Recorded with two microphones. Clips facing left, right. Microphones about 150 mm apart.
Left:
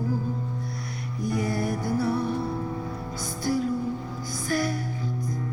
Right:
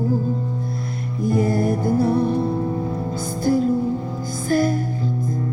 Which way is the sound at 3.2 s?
50° right (ahead or behind).